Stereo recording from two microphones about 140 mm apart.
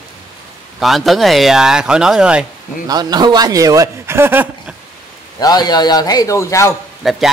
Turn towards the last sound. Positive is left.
turn(degrees=0)  # may be behind; listen again after turning